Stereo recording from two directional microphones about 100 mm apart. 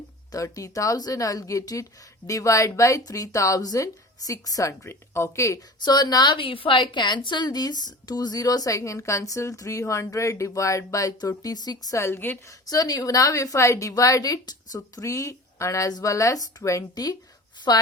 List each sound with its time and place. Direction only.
0.3 s speech: 35° left (ahead or behind)
5.8 s speech: 40° left (ahead or behind)
6.3 s speech: 60° left (ahead or behind); by 12.5 s 25° left (ahead or behind)
12.6 s speech: 40° left (ahead or behind)